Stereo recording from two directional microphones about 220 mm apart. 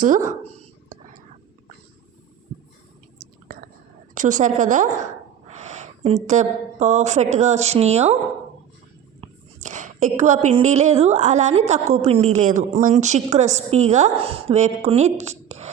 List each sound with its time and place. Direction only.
0.0 s a woman's voice: 35° right (ahead or behind)
0.9 s whispering: 35° right (ahead or behind)
3.5 s whispering: 45° right (ahead or behind)
4.1 s a woman's voice: 35° right (ahead or behind)
9.2 s a woman's voice: 35° right (ahead or behind)